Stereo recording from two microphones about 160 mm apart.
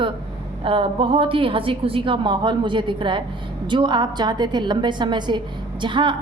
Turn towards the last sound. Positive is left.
turn(degrees=-30)  # may be behind; listen again after turning